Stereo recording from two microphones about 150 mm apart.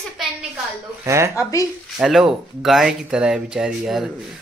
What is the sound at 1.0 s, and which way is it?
Speech, 20° right (ahead or behind).